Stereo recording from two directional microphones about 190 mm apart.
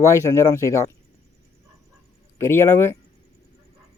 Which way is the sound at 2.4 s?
15° left (ahead or behind).